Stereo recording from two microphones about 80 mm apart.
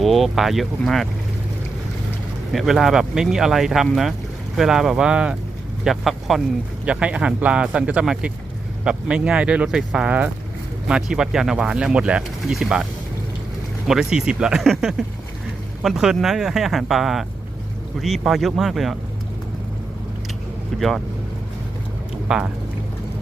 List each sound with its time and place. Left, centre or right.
0.0 s speech: centre
2.5 s speech: centre
5.8 s speech: centre
6.8 s speech: centre
13.8 s speech: centre
18.3 s speech: centre
20.7 s speech: centre
22.3 s speech: centre